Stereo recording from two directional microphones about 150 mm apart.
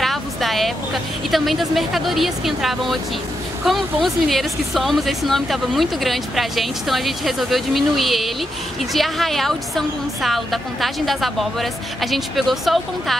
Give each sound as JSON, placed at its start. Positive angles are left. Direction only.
{"t": 0.0, "sound": "speech", "side_deg": 0}